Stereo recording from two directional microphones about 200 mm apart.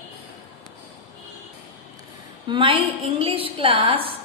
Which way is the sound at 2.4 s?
25° right (ahead or behind).